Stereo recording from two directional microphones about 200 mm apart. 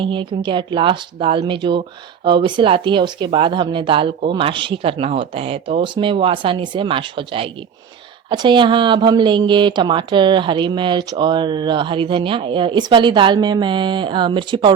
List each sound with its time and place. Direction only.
0.0 s a woman's voice: 25° right (ahead or behind)